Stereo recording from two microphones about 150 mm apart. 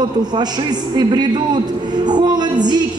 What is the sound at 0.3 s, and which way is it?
A man's voice, 30° right (ahead or behind).